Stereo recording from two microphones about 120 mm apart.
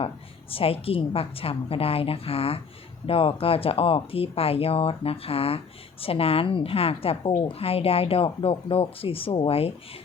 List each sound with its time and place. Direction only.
0.5 s speech: 50° left (ahead or behind)